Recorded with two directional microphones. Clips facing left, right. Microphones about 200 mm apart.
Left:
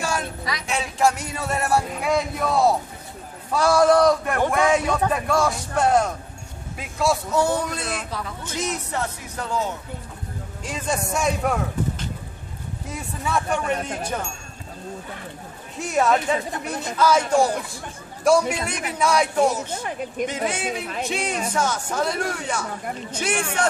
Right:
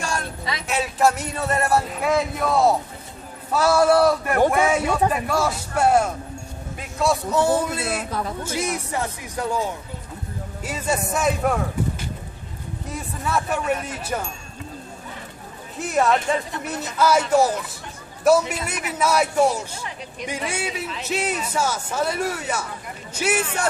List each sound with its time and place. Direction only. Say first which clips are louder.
0.0 s a sound: left 2 dB; 5° left (ahead or behind)
0.7 s a man's voice: right 1 dB; 5° right (ahead or behind)
8.1 s speech: right 4 dB; 40° right (ahead or behind)
8.5 s a man's voice: right 2 dB; 10° right (ahead or behind)
12.8 s speech: right 1 dB; centre (ahead or behind)
15.8 s speech: even; centre (ahead or behind)
19.8 s speech: left 7 dB; 50° left (ahead or behind)
21.1 s a man's voice: right 2 dB; 5° right (ahead or behind)